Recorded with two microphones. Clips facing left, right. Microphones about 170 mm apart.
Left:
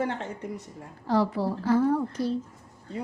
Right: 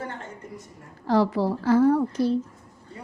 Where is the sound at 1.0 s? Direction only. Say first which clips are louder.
Right 3 dB; 90° right; by 2.3 s 75° right (ahead or behind).